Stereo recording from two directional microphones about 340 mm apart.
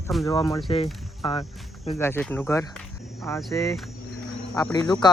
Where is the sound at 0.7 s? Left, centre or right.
Centre.